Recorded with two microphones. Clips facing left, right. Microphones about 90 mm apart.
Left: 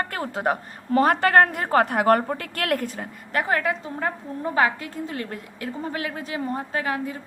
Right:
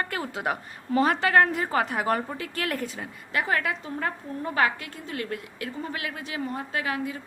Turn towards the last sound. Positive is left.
turn(degrees=35)  # may be behind; listen again after turning